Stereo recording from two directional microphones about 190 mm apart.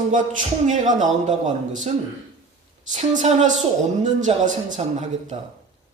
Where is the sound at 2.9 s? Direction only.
40° right (ahead or behind).